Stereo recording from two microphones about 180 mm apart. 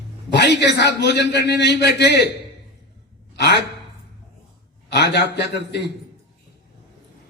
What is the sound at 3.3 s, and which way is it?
Gasp, 70° left (ahead or behind).